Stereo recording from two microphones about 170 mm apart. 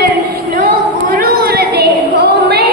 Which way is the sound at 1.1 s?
65° right (ahead or behind).